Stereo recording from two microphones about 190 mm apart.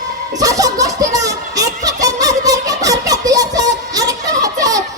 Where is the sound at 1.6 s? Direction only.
20° right (ahead or behind).